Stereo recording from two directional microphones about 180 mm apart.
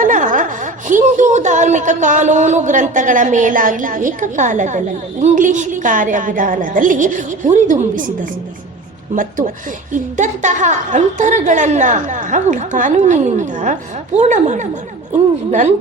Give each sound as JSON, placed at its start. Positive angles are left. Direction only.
{"t": 0.0, "sound": "a woman's voice", "side_deg": -45}